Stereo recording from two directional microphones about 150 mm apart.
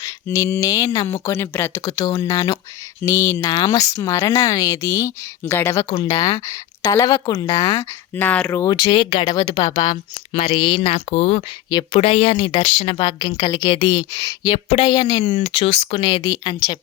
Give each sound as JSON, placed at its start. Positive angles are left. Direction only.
{"t": 0.0, "sound": "a sound", "side_deg": 20}
{"t": 1.0, "sound": "speech", "side_deg": 15}
{"t": 5.8, "sound": "speech", "side_deg": 35}
{"t": 8.6, "sound": "speech", "side_deg": 30}
{"t": 9.2, "sound": "a woman's voice", "side_deg": 25}
{"t": 13.1, "sound": "speech", "side_deg": 30}